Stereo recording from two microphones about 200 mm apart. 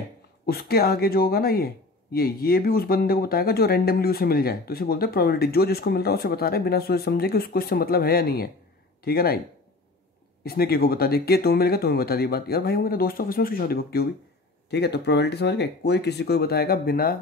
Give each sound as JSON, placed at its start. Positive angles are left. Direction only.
{"t": 0.5, "sound": "speech", "side_deg": 50}
{"t": 10.4, "sound": "speech", "side_deg": 50}